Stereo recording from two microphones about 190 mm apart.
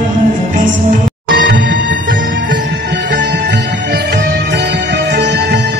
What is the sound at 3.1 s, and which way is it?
Music, 70° right (ahead or behind).